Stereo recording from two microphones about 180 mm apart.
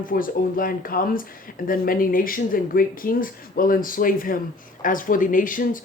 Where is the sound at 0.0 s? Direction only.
50° left (ahead or behind).